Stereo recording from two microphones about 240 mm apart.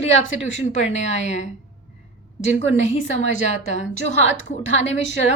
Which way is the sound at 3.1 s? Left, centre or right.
Left.